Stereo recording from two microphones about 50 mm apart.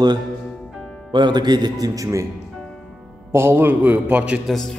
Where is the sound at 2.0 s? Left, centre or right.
Right.